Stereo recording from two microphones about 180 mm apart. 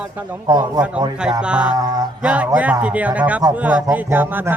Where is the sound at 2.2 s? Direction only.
5° right (ahead or behind).